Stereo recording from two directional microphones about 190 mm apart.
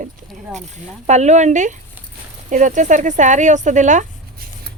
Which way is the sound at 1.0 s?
35° right (ahead or behind).